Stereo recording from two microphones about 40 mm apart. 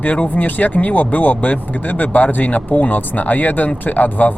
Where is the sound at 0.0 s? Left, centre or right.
Left.